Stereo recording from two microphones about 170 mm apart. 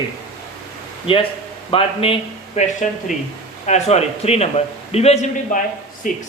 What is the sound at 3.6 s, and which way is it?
Speech, 40° left (ahead or behind).